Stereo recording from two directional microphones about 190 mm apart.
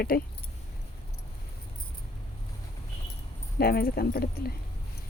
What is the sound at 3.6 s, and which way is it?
Speech, 55° left (ahead or behind).